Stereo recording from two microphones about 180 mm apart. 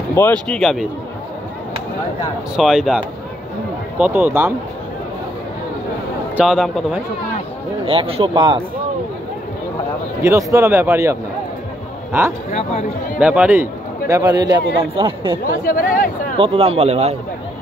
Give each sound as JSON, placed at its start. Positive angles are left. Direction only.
{"t": 0.1, "sound": "speech", "side_deg": 10}
{"t": 2.5, "sound": "speech", "side_deg": 0}
{"t": 4.0, "sound": "speech", "side_deg": -10}
{"t": 6.3, "sound": "speech", "side_deg": 0}
{"t": 7.8, "sound": "a man's voice", "side_deg": -30}
{"t": 10.2, "sound": "speech", "side_deg": -15}
{"t": 12.4, "sound": "speech", "side_deg": 45}
{"t": 13.2, "sound": "a man's voice", "side_deg": -10}
{"t": 15.6, "sound": "speech", "side_deg": 50}
{"t": 16.3, "sound": "a man's voice", "side_deg": -30}